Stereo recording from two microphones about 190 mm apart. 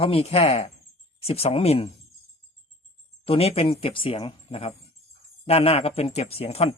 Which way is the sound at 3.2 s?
30° left (ahead or behind).